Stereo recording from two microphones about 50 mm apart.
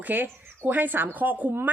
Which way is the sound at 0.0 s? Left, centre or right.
Right.